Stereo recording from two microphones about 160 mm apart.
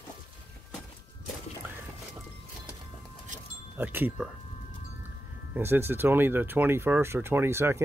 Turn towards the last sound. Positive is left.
turn(degrees=-15)  # may be behind; listen again after turning